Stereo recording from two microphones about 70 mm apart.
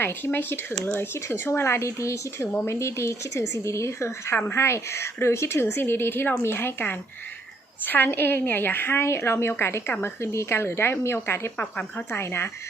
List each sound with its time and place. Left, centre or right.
0.0 s a woman's voice: left